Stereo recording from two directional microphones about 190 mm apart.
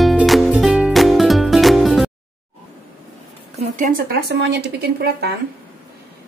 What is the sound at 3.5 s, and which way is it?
Speech, 45° right (ahead or behind).